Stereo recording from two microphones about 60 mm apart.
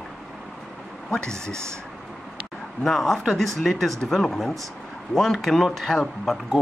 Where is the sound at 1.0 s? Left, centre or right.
Centre.